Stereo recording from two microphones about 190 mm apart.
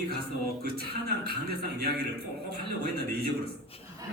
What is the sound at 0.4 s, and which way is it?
A man's voice, 55° right (ahead or behind).